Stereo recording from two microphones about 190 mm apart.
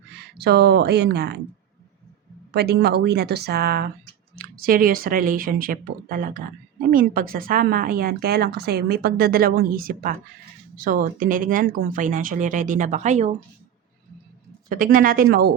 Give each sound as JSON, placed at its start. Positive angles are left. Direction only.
{"t": 0.1, "sound": "speech", "side_deg": -60}
{"t": 2.5, "sound": "a woman's voice", "side_deg": -60}
{"t": 14.7, "sound": "a woman's voice", "side_deg": -45}